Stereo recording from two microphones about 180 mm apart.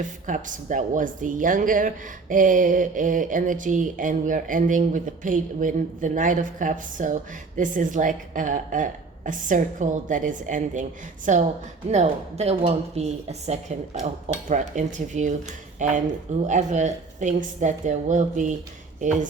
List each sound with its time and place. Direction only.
0.0 s a woman's voice: 45° right (ahead or behind)